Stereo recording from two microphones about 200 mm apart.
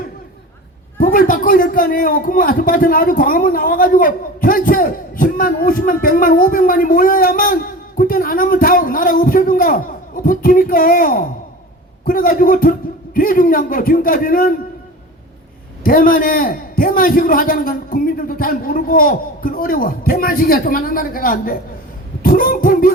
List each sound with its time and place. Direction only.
0.9 s a man's voice: 45° left (ahead or behind)
15.8 s a man's voice: 45° left (ahead or behind)